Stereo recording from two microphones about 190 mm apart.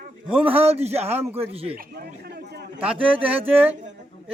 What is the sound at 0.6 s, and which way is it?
Speech, 35° right (ahead or behind).